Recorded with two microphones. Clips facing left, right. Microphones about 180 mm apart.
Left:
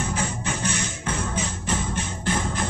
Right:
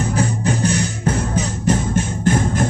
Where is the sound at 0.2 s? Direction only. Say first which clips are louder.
Right 9 dB; 40° right (ahead or behind).